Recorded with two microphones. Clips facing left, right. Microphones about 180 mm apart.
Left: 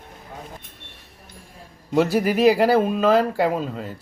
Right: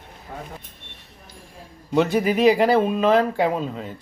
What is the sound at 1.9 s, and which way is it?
A man's voice, 5° left (ahead or behind).